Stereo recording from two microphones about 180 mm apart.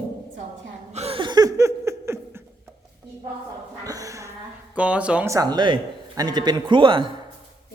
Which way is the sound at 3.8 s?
20° right (ahead or behind).